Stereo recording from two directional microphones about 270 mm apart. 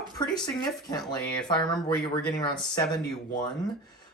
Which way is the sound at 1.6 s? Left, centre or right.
Centre.